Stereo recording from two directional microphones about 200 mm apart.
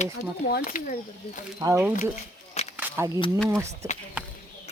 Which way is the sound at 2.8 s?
15° right (ahead or behind).